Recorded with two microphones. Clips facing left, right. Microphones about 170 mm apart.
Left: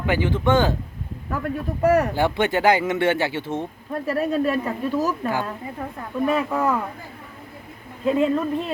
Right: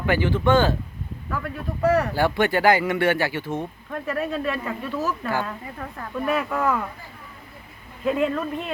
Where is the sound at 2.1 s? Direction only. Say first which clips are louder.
Even; 20° left (ahead or behind).